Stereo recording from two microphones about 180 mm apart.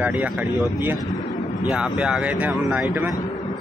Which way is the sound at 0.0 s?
10° right (ahead or behind).